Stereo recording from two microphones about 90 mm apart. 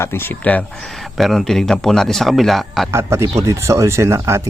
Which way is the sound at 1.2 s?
Centre (ahead or behind).